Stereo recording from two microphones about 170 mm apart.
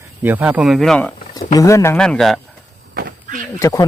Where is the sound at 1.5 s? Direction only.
20° left (ahead or behind).